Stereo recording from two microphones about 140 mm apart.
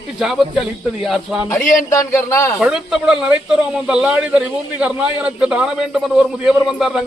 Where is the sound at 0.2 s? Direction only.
5° right (ahead or behind).